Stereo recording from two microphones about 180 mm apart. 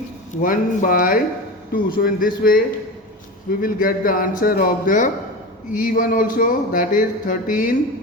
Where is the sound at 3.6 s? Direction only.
50° left (ahead or behind).